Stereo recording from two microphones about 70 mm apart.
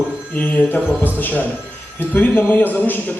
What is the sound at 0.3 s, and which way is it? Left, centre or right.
A man's voice, left.